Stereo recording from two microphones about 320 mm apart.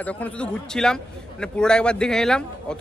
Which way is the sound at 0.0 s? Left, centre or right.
Centre.